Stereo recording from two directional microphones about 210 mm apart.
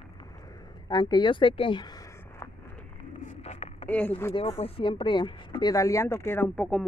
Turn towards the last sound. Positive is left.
turn(degrees=5)  # may be behind; listen again after turning